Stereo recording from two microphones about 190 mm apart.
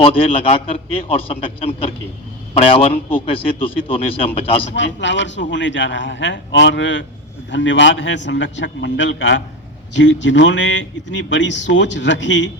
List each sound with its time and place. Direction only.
0.0 s a man's voice: 30° left (ahead or behind)
4.7 s speech: 70° left (ahead or behind)